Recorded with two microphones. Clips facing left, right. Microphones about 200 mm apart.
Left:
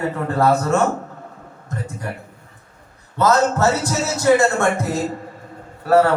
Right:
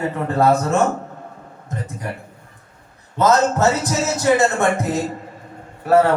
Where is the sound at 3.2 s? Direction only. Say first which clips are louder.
Right 1 dB; 20° right (ahead or behind).